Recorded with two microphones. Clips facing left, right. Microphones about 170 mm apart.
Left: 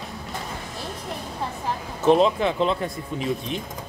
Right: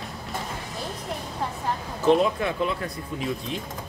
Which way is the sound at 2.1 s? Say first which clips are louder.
Left 3 dB; 20° left (ahead or behind).